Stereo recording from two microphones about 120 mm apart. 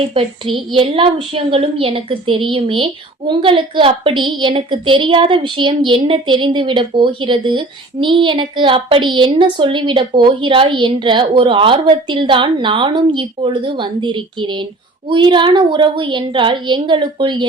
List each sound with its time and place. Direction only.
0.1 s a woman's voice: 50° right (ahead or behind)